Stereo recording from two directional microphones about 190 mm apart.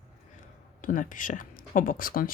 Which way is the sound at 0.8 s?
45° left (ahead or behind).